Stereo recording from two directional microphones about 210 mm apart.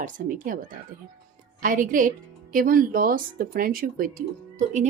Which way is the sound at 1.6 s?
40° right (ahead or behind).